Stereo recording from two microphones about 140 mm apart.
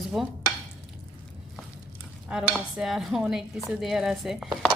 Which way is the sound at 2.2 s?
5° right (ahead or behind).